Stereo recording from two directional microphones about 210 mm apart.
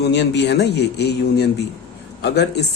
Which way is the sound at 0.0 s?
55° left (ahead or behind).